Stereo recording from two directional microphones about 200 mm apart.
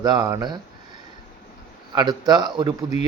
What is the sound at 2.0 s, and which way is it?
A man's voice, 20° right (ahead or behind).